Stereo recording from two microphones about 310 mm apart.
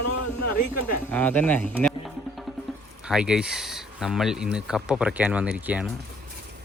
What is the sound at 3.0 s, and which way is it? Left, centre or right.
Speech, centre.